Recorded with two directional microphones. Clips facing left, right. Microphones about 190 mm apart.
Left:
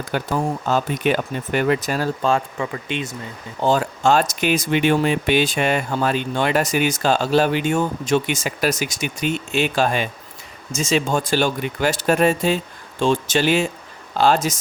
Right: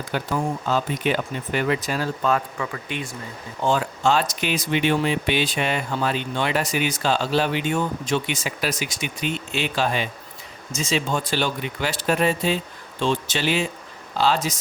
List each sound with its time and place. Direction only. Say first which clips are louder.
0.1 s speech: left 2 dB; 50° left (ahead or behind)
2.2 s speech: left 1 dB; 25° left (ahead or behind)
3.6 s speech: left 3 dB; 40° left (ahead or behind)